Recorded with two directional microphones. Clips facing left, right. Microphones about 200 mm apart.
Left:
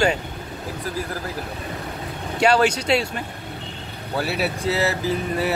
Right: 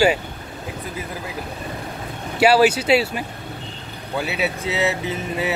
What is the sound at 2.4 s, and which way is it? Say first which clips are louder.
Speech: right 3 dB; 5° right (ahead or behind).